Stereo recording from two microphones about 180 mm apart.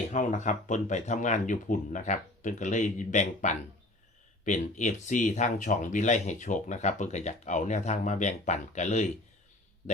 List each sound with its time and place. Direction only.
0.1 s speech: 45° left (ahead or behind)